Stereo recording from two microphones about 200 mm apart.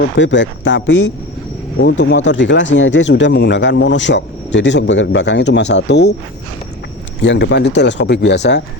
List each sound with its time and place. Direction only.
0.2 s speech: 65° left (ahead or behind)
7.2 s speech: 60° left (ahead or behind)